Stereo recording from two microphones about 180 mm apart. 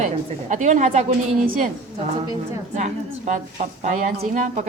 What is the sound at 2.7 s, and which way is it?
A woman's voice, 40° right (ahead or behind).